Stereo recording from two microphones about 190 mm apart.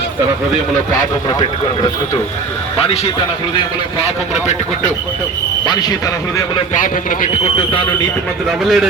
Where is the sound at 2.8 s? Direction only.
30° left (ahead or behind).